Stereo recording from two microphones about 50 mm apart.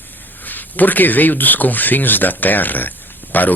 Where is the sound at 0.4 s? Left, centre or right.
Left.